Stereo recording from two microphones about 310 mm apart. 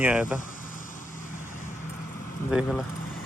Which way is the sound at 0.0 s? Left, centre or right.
Centre.